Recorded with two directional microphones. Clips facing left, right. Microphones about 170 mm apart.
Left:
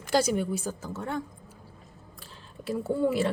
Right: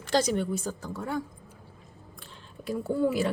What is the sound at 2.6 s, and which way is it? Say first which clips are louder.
Speech: even; centre (ahead or behind).